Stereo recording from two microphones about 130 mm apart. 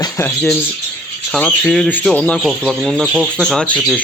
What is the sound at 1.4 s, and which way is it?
Speech, 10° left (ahead or behind).